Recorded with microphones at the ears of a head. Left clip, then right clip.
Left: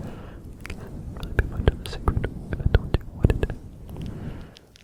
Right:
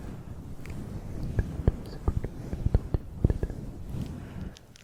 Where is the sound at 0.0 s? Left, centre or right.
Left.